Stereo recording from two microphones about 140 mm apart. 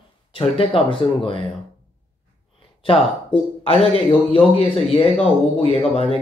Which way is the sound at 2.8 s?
40° left (ahead or behind).